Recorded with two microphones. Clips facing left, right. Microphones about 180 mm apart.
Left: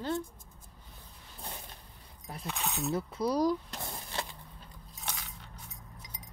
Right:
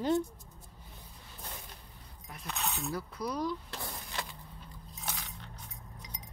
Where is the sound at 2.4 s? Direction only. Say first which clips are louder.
Left 2 dB; 10° left (ahead or behind).